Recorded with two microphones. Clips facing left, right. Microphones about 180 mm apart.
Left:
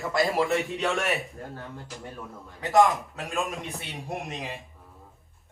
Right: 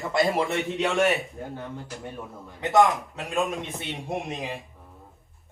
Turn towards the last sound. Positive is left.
turn(degrees=0)  # may be behind; listen again after turning